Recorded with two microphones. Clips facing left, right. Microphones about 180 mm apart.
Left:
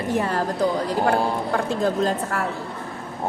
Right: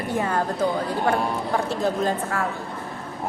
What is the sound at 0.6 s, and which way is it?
Speech, 35° left (ahead or behind).